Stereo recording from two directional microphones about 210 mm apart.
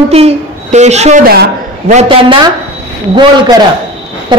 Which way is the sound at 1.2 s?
45° right (ahead or behind).